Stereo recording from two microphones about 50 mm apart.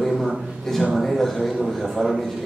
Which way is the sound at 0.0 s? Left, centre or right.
Centre.